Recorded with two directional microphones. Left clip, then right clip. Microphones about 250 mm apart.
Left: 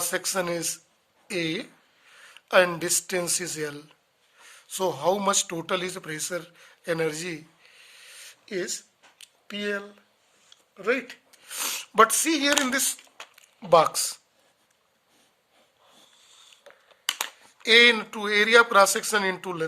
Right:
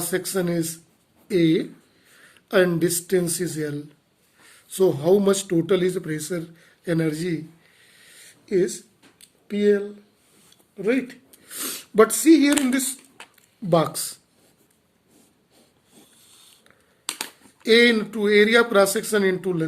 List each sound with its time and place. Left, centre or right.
0.0 s a man's voice: left
9.1 s a sound: left
10.8 s speech: left
17.2 s speech: left